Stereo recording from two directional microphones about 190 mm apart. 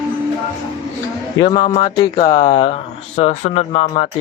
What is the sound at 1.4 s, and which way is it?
Speech, 25° left (ahead or behind).